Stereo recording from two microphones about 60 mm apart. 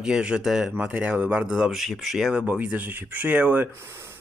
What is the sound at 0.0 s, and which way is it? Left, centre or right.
Speech, centre.